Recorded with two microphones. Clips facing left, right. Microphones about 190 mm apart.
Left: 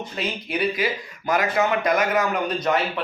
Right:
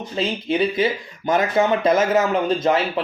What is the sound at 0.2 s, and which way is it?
Speech, 25° right (ahead or behind).